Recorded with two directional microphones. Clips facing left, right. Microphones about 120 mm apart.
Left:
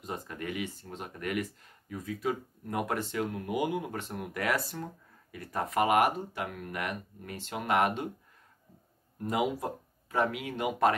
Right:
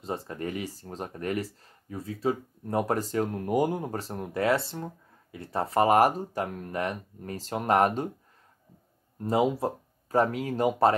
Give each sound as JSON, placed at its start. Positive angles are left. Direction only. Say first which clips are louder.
{"t": 0.0, "sound": "speech", "louder": "right 5 dB", "side_deg": -30}
{"t": 9.2, "sound": "speech", "louder": "right 5 dB", "side_deg": -30}